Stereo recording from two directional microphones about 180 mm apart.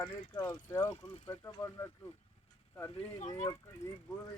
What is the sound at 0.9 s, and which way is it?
Speech, 30° left (ahead or behind).